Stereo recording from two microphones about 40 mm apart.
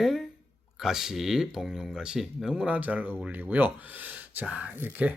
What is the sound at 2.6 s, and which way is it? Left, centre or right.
Speech, right.